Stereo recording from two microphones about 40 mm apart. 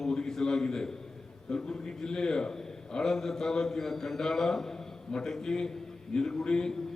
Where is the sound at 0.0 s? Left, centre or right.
Centre.